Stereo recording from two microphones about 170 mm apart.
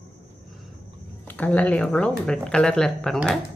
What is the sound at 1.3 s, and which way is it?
A woman's voice, 10° left (ahead or behind).